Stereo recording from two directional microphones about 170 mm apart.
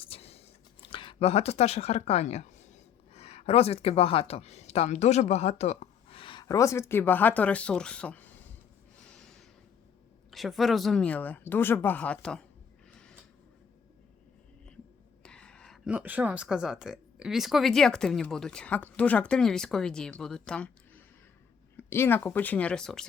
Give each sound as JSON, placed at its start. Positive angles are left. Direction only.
{"t": 0.0, "sound": "speech", "side_deg": 35}
{"t": 9.0, "sound": "snort", "side_deg": 5}
{"t": 10.3, "sound": "speech", "side_deg": 0}
{"t": 12.9, "sound": "a sound", "side_deg": 5}
{"t": 15.2, "sound": "speech", "side_deg": 5}